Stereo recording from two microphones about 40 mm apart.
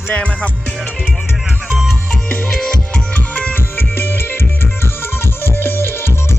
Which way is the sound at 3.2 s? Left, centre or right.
Left.